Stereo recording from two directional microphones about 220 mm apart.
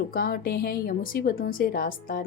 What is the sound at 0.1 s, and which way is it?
A woman's voice, 40° left (ahead or behind).